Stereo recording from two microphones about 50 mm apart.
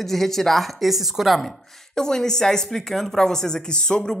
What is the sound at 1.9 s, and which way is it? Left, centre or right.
A woman's voice, centre.